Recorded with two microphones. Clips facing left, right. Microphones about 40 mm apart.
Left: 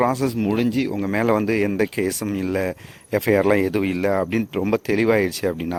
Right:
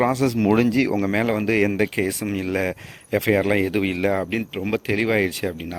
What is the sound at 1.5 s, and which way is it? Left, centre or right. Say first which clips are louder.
Speech: right 1 dB; right.